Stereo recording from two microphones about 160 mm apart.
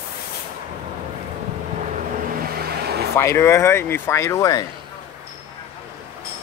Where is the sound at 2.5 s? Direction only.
75° right (ahead or behind).